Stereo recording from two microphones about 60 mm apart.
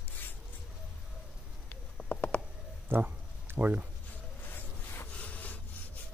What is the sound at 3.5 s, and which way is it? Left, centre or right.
Speech, right.